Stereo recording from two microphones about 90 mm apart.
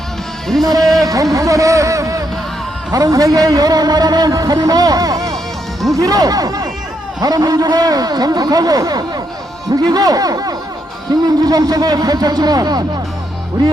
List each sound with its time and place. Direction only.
0.8 s a man's voice: centre (ahead or behind)
1.0 s a man's voice: 40° right (ahead or behind)